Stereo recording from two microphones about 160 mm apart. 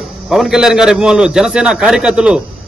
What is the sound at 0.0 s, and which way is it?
A man's voice, centre (ahead or behind).